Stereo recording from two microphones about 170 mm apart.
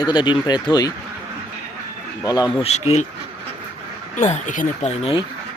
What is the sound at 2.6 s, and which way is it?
Speech, 40° left (ahead or behind).